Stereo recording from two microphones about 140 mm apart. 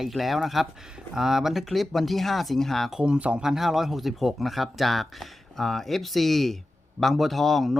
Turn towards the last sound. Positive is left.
turn(degrees=0)  # may be behind; listen again after turning